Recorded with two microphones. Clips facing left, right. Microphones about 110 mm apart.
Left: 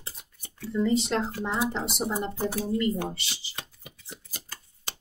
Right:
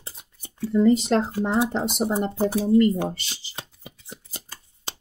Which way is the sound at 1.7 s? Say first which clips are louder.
Right 6 dB; 35° right (ahead or behind).